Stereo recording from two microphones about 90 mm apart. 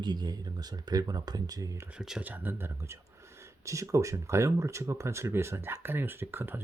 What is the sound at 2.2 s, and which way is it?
Speech, 20° right (ahead or behind).